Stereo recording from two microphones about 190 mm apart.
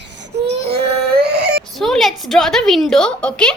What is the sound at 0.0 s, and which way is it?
Baby cry, 65° right (ahead or behind).